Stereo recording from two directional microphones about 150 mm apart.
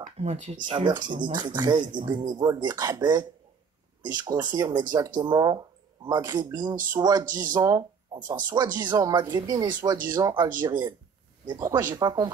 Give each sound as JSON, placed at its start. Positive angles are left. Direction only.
{"t": 0.0, "sound": "speech", "side_deg": -45}
{"t": 0.7, "sound": "speech", "side_deg": -30}